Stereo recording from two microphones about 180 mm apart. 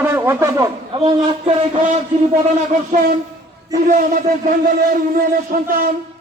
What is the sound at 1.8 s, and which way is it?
A man's voice, 40° right (ahead or behind).